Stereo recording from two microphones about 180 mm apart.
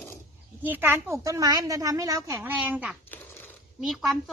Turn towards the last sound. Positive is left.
turn(degrees=0)  # may be behind; listen again after turning